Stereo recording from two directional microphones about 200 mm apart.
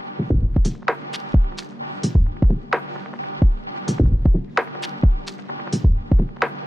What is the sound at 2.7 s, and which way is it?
Music, centre (ahead or behind).